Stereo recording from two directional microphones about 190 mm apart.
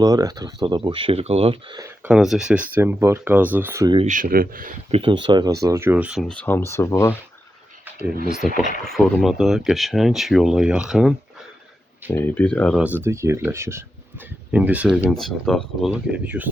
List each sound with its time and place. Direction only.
0.0 s speech: 20° right (ahead or behind)
2.0 s speech: centre (ahead or behind)
3.9 s speech: 40° right (ahead or behind)
4.9 s speech: 30° right (ahead or behind); by 7.2 s 15° left (ahead or behind)
8.4 s speech: 45° left (ahead or behind)
8.8 s speech: 5° left (ahead or behind)
12.1 s speech: 10° left (ahead or behind)
13.0 s speech: 15° right (ahead or behind)